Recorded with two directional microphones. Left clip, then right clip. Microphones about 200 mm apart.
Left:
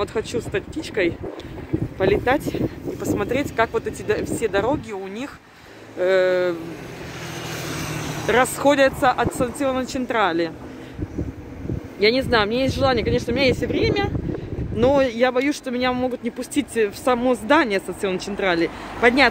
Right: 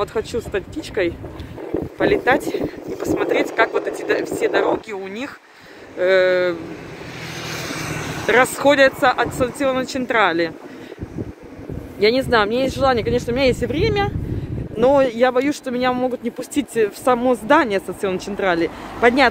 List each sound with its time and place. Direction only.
0.0 s speech: centre (ahead or behind)
7.3 s vehicle: 55° left (ahead or behind)
8.3 s speech: 10° left (ahead or behind)
12.0 s speech: centre (ahead or behind)